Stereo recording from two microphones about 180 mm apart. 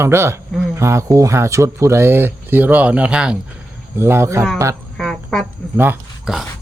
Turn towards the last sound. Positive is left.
turn(degrees=0)  # may be behind; listen again after turning